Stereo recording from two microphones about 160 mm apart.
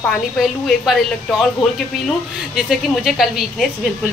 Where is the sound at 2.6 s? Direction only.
Centre (ahead or behind).